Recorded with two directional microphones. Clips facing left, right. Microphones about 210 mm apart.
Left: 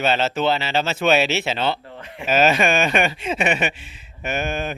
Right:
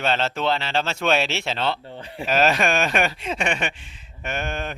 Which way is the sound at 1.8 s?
30° right (ahead or behind).